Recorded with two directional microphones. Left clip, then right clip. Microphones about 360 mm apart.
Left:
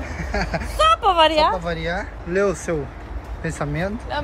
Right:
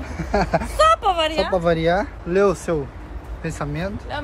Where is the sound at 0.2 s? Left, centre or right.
Centre.